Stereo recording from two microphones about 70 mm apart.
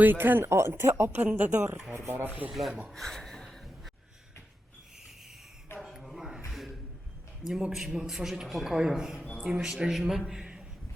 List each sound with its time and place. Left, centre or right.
0.0 s speech: right
1.3 s speech: right
1.9 s speech: right
2.5 s rub: centre
2.9 s a sound: centre
5.8 s a sound: centre
7.4 s a man's voice: centre